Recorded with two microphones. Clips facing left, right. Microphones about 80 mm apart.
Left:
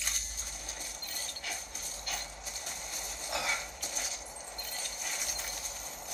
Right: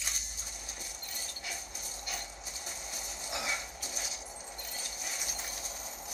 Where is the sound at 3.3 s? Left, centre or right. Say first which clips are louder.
Left 2 dB; centre.